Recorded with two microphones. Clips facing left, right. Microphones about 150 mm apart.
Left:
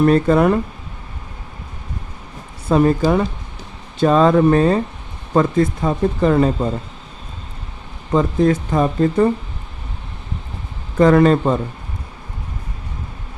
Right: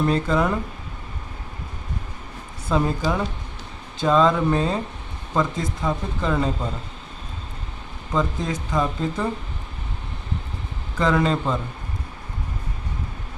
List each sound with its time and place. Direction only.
0.0 s speech: 55° left (ahead or behind)
2.6 s speech: 60° left (ahead or behind)
8.1 s speech: 60° left (ahead or behind)
10.9 s speech: 55° left (ahead or behind)